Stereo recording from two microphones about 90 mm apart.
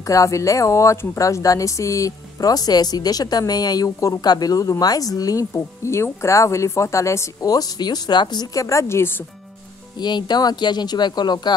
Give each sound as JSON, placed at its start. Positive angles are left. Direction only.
{"t": 0.0, "sound": "speech", "side_deg": 35}
{"t": 8.5, "sound": "speech", "side_deg": 35}
{"t": 9.9, "sound": "speech", "side_deg": 55}